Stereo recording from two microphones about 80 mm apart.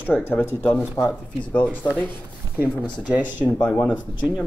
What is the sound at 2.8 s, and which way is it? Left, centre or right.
Speech, centre.